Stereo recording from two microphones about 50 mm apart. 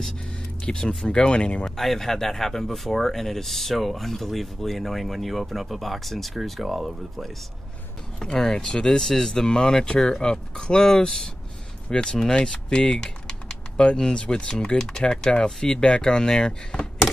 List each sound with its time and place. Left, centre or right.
0.7 s speech: centre
1.6 s speech: centre
8.2 s speech: centre